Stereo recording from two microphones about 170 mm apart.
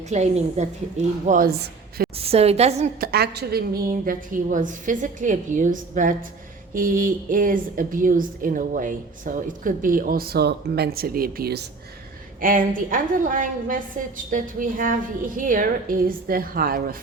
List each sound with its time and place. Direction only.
0.1 s speech: 40° right (ahead or behind)
1.2 s a woman's voice: 50° right (ahead or behind)
2.1 s a woman's voice: 35° right (ahead or behind)
3.0 s speech: 70° right (ahead or behind)
12.4 s speech: 55° right (ahead or behind)